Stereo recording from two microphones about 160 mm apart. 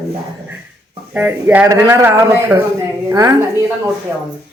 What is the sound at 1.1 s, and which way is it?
A woman's voice, 10° right (ahead or behind).